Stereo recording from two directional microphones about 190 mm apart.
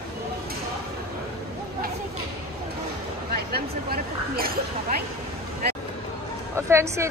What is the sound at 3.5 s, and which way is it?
Speech, 50° right (ahead or behind).